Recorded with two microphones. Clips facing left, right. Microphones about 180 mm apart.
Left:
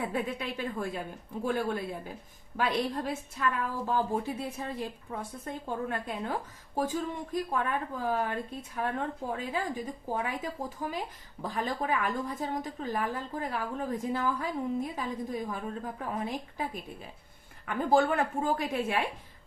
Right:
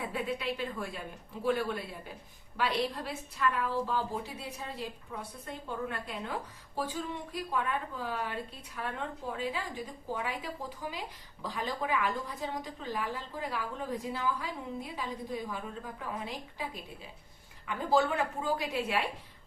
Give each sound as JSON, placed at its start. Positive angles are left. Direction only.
{"t": 0.0, "sound": "a woman's voice", "side_deg": 50}
{"t": 7.3, "sound": "a woman's voice", "side_deg": 45}
{"t": 17.7, "sound": "a woman's voice", "side_deg": 50}